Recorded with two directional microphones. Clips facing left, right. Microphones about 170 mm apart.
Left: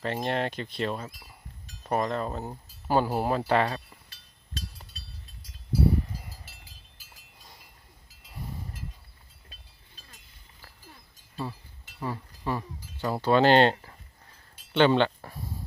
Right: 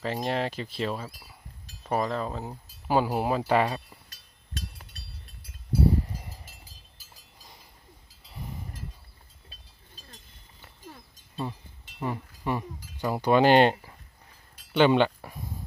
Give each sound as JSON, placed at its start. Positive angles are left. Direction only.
{"t": 0.0, "sound": "speech", "side_deg": 0}
{"t": 4.1, "sound": "a sound", "side_deg": -55}
{"t": 11.9, "sound": "speech", "side_deg": -20}